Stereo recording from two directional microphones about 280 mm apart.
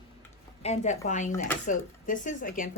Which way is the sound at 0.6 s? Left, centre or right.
Left.